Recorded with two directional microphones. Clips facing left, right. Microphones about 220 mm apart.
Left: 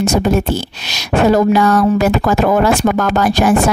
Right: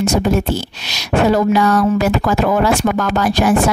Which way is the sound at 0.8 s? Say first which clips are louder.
Left 2 dB; 45° left (ahead or behind).